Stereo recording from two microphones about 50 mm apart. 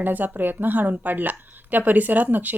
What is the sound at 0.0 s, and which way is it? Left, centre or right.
A woman's voice, right.